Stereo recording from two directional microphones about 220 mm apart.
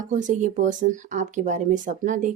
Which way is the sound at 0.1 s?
35° right (ahead or behind).